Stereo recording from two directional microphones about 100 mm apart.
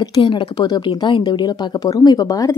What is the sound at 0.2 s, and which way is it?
A woman's voice, 55° left (ahead or behind).